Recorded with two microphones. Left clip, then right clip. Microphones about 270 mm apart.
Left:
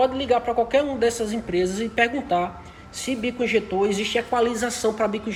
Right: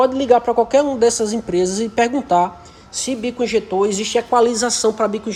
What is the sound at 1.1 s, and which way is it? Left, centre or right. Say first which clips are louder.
Speech: right 7 dB; right.